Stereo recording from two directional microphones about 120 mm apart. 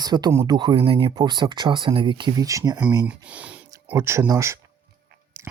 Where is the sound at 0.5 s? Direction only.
45° right (ahead or behind).